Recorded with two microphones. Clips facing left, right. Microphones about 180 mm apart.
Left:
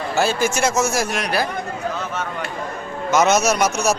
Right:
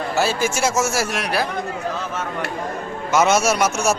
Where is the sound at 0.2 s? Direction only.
5° right (ahead or behind).